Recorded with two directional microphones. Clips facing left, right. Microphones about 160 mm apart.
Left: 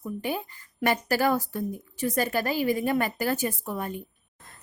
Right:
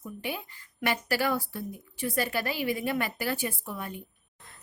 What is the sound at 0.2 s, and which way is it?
A woman's voice, 40° left (ahead or behind).